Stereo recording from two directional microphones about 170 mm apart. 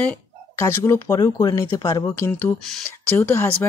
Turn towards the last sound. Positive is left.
turn(degrees=15)  # may be behind; listen again after turning